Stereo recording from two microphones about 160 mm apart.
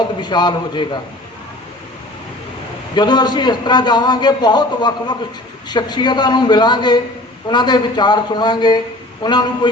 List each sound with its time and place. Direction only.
0.2 s a man's voice: 25° left (ahead or behind)
2.9 s a man's voice: 25° left (ahead or behind)